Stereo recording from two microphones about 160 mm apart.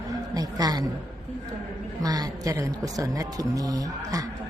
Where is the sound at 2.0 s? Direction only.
25° right (ahead or behind).